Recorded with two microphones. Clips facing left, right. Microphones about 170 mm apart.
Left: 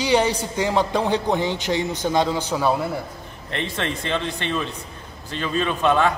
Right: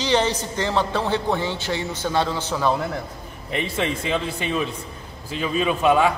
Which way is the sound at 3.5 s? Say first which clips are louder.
Right 2 dB; 5° right (ahead or behind).